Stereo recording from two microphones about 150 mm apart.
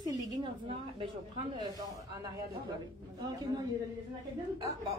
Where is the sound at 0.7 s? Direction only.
35° right (ahead or behind).